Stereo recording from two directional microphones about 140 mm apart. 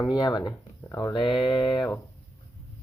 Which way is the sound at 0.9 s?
20° left (ahead or behind).